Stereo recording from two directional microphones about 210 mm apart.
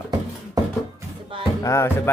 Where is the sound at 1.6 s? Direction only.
15° left (ahead or behind).